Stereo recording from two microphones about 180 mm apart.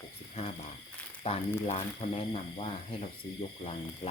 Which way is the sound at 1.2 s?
30° left (ahead or behind).